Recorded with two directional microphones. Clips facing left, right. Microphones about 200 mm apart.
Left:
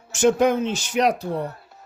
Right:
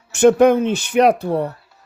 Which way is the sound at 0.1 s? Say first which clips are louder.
Right 6 dB; 60° right (ahead or behind).